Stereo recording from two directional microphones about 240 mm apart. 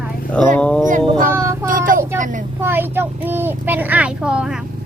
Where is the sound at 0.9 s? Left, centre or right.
Right.